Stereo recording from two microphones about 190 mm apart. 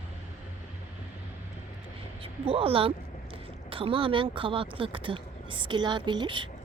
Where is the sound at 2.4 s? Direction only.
30° right (ahead or behind).